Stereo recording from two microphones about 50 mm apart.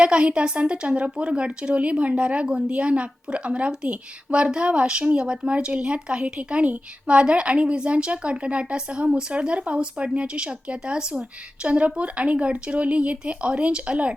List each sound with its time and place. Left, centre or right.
0.0 s a woman's voice: right